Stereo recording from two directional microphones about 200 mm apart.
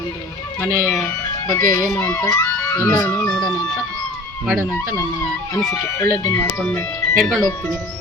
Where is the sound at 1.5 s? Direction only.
15° left (ahead or behind).